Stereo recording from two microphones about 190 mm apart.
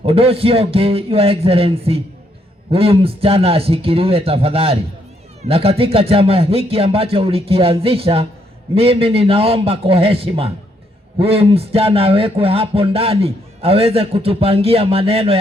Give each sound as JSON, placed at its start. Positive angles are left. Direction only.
{"t": 0.0, "sound": "a man's voice", "side_deg": -30}